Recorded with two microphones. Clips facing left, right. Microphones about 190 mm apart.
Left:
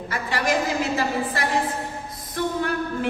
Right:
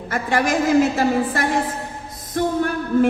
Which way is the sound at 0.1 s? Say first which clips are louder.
Right 4 dB; 50° right (ahead or behind).